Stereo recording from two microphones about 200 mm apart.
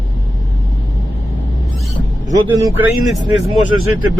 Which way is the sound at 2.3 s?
15° right (ahead or behind).